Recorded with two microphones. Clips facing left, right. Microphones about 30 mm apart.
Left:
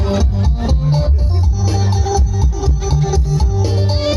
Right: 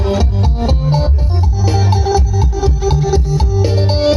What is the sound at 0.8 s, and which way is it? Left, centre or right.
Music, centre.